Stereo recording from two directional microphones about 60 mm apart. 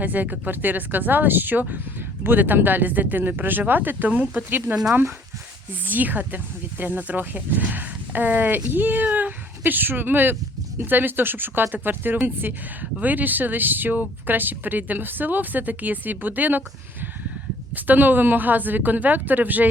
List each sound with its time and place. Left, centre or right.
0.0 s speech: right
4.7 s speech: centre
5.8 s speech: right
17.7 s speech: right